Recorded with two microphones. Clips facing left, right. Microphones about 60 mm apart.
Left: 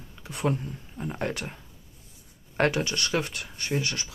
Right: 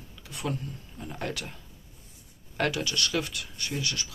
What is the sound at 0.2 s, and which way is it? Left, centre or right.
Speech, left.